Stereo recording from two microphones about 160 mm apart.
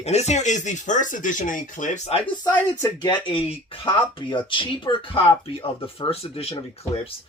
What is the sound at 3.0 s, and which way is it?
Speech, 30° left (ahead or behind).